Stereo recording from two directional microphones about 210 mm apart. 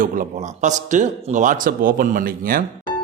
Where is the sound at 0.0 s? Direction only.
40° right (ahead or behind).